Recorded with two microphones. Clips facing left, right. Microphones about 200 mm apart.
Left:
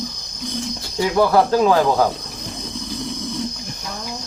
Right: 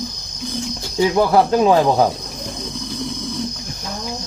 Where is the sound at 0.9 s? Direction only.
20° right (ahead or behind).